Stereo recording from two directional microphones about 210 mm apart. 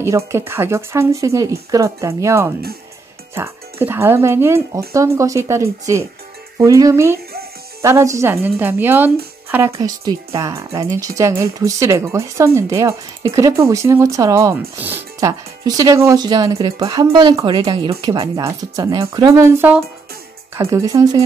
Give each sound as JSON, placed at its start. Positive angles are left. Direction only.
{"t": 0.3, "sound": "a woman's voice", "side_deg": -10}